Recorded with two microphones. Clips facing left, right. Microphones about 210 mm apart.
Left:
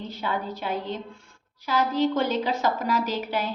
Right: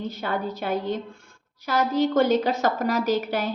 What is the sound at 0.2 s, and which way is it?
A woman's voice, 45° right (ahead or behind).